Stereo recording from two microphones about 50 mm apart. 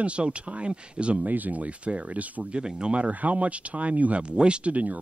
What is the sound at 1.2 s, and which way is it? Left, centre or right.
Speech, right.